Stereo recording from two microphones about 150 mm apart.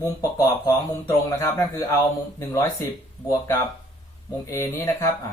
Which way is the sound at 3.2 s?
20° left (ahead or behind).